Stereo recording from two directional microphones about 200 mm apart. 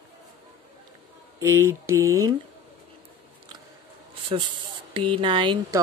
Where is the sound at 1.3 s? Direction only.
15° right (ahead or behind).